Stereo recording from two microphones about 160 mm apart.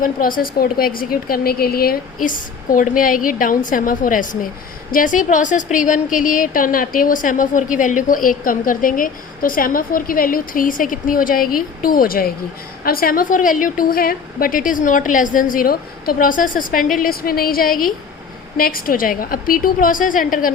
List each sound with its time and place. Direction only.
0.0 s a woman's voice: 60° left (ahead or behind)